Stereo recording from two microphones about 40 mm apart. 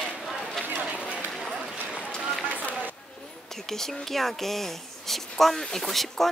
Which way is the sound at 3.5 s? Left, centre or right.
Centre.